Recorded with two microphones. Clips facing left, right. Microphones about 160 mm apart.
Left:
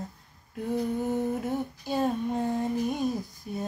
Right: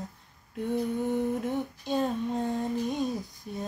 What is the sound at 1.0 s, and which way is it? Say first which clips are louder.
Female singing: even; 5° left (ahead or behind).